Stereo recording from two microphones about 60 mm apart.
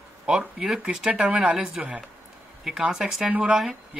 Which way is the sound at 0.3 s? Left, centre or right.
Centre.